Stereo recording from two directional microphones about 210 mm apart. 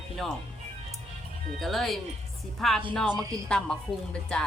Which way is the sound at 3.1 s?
15° right (ahead or behind).